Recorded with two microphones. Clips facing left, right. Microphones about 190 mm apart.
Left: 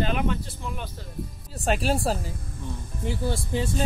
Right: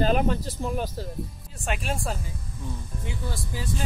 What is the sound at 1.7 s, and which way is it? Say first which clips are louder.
Speech: left 6 dB; 35° left (ahead or behind).